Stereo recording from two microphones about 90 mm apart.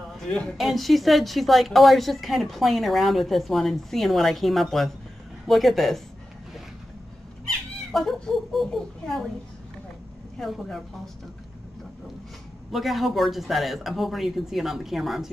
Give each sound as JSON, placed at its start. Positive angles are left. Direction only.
{"t": 0.2, "sound": "speech", "side_deg": 5}
{"t": 7.9, "sound": "speech", "side_deg": 5}
{"t": 10.4, "sound": "speech", "side_deg": 5}
{"t": 12.7, "sound": "speech", "side_deg": 0}